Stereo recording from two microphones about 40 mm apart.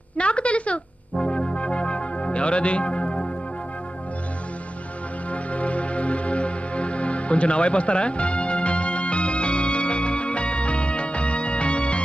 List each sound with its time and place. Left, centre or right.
0.2 s a sound: left
1.1 s music: centre
5.3 s music: left